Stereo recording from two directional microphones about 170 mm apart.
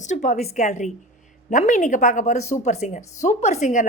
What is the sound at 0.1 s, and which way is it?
A woman's voice, 45° left (ahead or behind).